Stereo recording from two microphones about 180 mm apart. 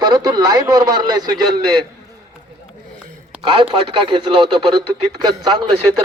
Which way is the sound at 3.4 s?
30° right (ahead or behind).